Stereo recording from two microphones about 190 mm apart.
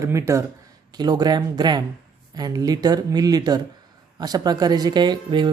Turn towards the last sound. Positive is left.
turn(degrees=-25)  # may be behind; listen again after turning